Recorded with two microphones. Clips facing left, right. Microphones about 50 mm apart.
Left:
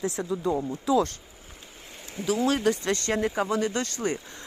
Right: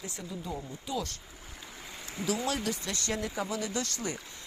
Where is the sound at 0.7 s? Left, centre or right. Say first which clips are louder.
Left 13 dB; left.